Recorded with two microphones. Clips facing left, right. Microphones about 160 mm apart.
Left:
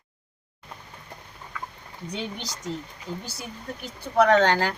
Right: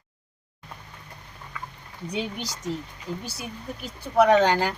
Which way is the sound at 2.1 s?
5° right (ahead or behind).